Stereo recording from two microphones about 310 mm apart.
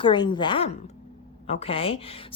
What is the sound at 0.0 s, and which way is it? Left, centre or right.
A woman's voice, centre.